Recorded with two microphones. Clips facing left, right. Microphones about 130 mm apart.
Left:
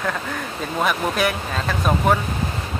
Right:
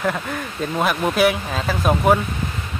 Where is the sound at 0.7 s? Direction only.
5° right (ahead or behind).